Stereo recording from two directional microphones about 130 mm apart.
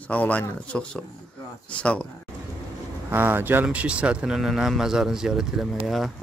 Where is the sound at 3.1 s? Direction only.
15° right (ahead or behind).